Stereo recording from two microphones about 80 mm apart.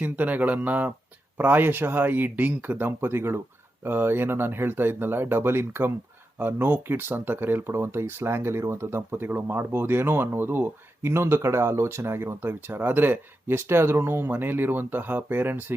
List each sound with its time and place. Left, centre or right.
0.0 s speech: right